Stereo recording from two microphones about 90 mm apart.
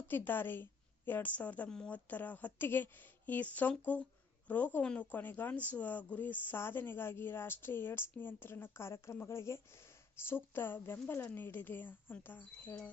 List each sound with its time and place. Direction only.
0.1 s a woman's voice: 25° left (ahead or behind)